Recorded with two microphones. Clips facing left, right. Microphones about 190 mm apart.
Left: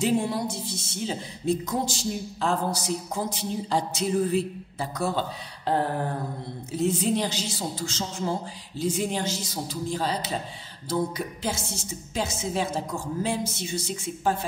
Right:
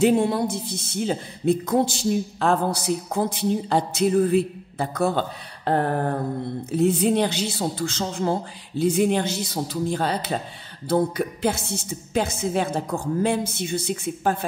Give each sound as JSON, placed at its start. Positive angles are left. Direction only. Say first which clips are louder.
{"t": 0.0, "sound": "speech", "louder": "right 6 dB", "side_deg": -60}